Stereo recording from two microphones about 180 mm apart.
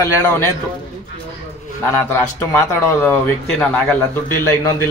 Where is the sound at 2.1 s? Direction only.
10° left (ahead or behind).